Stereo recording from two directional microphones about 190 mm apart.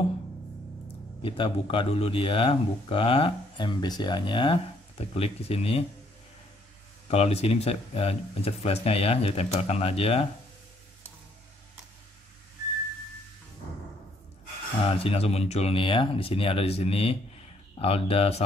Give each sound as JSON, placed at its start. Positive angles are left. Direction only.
{"t": 1.2, "sound": "a man's voice", "side_deg": 30}
{"t": 7.1, "sound": "speech", "side_deg": 30}
{"t": 14.9, "sound": "speech", "side_deg": 30}